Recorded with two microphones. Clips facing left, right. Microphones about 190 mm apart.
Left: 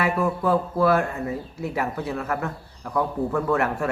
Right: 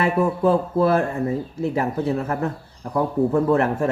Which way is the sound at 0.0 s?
25° right (ahead or behind).